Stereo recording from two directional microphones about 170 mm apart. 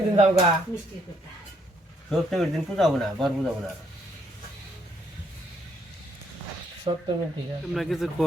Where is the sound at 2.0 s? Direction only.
Centre (ahead or behind).